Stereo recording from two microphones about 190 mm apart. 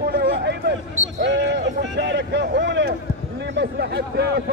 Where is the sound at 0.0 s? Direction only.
55° right (ahead or behind).